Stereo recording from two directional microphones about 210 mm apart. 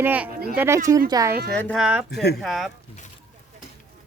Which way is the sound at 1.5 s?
5° left (ahead or behind).